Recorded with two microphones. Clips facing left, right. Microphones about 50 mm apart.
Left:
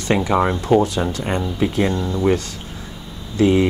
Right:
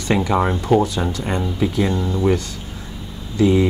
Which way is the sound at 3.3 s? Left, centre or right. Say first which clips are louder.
Even; left.